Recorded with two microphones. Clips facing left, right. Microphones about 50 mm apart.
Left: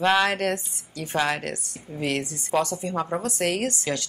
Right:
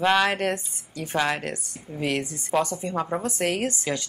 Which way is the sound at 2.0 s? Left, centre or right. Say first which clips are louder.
Even; centre.